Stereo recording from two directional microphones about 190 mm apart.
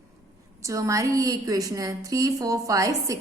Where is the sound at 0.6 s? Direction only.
15° right (ahead or behind).